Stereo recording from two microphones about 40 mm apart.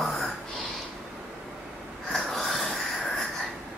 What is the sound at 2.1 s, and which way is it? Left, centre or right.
Wheeze, centre.